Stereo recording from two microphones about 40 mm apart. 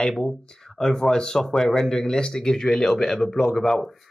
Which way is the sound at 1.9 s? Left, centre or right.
Centre.